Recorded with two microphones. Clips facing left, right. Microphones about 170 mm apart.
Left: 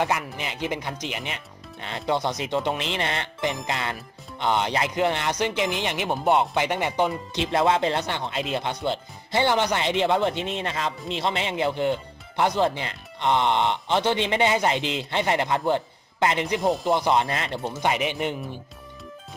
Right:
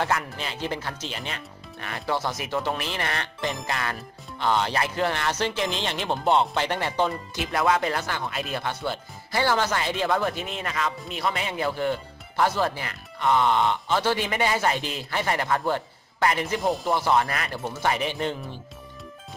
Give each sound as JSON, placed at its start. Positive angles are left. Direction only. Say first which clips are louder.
{"t": 0.0, "sound": "speech", "louder": "left 1 dB", "side_deg": 15}
{"t": 7.5, "sound": "speech", "louder": "left 2 dB", "side_deg": 25}